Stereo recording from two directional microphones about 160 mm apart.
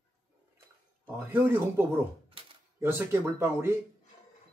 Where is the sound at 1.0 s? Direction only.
10° right (ahead or behind).